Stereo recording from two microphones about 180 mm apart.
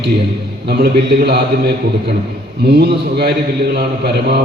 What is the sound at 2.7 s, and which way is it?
A man's voice, 65° right (ahead or behind).